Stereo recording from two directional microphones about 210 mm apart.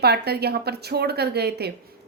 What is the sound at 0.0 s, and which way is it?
A woman's voice, 50° right (ahead or behind).